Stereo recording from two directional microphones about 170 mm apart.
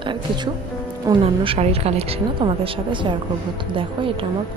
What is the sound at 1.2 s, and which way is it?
A woman's voice, 35° right (ahead or behind).